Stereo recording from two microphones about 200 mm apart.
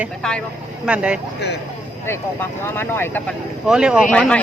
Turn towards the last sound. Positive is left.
turn(degrees=5)  # may be behind; listen again after turning